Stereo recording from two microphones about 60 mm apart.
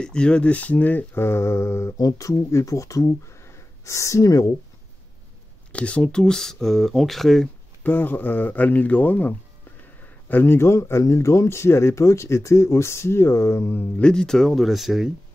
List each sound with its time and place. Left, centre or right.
0.0 s mantra: centre; by 2.0 s left
2.0 s speech: left
3.4 s gasp: left
5.7 s speech: centre
7.8 s mantra: left
10.2 s speech: left
14.0 s speech: centre